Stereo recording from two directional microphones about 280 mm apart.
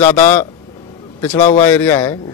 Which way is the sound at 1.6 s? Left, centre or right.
Centre.